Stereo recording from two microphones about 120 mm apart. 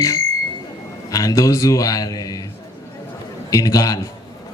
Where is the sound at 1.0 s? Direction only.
30° left (ahead or behind).